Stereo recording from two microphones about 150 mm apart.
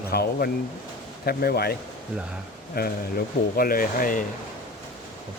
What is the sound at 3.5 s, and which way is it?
Speech, 75° left (ahead or behind).